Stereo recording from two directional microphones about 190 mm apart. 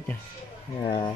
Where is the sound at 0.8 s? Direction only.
30° left (ahead or behind).